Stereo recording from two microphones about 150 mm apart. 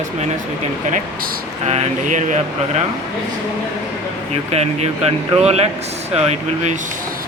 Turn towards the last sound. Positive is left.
turn(degrees=-45)  # may be behind; listen again after turning